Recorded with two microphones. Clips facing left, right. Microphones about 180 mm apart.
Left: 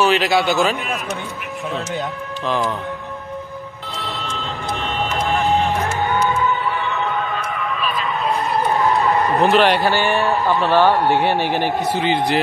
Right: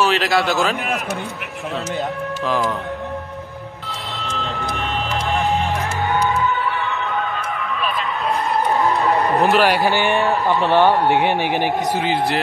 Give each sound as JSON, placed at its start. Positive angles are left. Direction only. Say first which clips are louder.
{"t": 0.0, "sound": "a man's voice", "louder": "left 2 dB", "side_deg": 0}
{"t": 2.4, "sound": "a man's voice", "louder": "even", "side_deg": 0}
{"t": 9.1, "sound": "a sound", "louder": "even", "side_deg": -15}
{"t": 9.5, "sound": "a man's voice", "louder": "left 2 dB", "side_deg": -5}
{"t": 9.8, "sound": "a man's voice", "louder": "even", "side_deg": -15}
{"t": 12.0, "sound": "a man's voice", "louder": "left 1 dB", "side_deg": 0}